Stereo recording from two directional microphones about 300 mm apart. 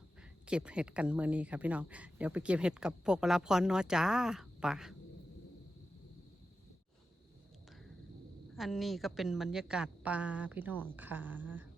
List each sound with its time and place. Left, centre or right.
0.4 s speech: centre
8.5 s speech: centre